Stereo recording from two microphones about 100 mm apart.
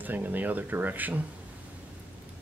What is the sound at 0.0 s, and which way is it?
Speech, 20° right (ahead or behind).